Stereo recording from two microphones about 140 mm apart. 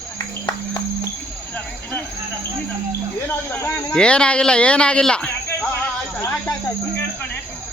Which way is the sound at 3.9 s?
5° left (ahead or behind).